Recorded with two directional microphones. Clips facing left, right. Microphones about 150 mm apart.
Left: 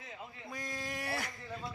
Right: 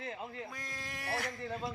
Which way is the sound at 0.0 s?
75° right (ahead or behind).